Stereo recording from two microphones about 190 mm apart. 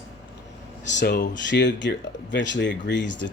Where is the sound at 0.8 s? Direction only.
65° left (ahead or behind).